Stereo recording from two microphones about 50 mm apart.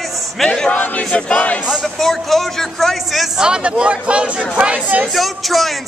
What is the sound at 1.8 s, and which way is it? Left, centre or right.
A man's voice, centre.